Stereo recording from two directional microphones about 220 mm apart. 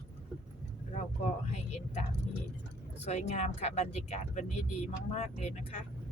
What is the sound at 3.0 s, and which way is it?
Speech, 30° left (ahead or behind).